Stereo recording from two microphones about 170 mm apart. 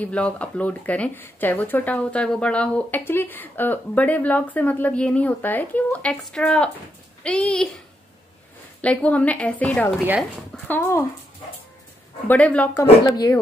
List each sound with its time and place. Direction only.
0.0 s a child's voice: 5° left (ahead or behind)
8.8 s speech: 5° left (ahead or behind)
10.0 s speech: 5° right (ahead or behind)
10.7 s speech: 15° left (ahead or behind)
12.3 s speech: 10° left (ahead or behind)